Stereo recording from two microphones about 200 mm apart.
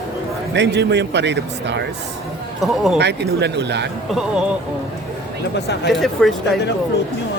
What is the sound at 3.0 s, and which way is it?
Speech, 60° right (ahead or behind).